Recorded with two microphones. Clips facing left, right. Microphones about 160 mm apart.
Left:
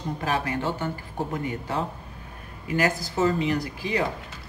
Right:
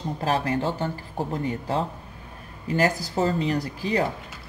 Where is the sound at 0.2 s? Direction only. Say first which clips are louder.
Right 3 dB; 35° right (ahead or behind).